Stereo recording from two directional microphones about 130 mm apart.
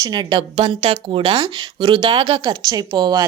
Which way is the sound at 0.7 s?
45° right (ahead or behind).